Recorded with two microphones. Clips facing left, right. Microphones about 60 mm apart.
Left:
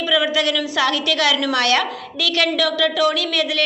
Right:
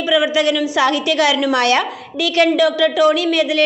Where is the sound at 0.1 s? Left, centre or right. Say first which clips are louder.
Right 4 dB; centre.